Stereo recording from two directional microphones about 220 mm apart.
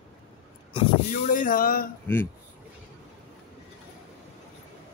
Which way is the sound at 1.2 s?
40° left (ahead or behind).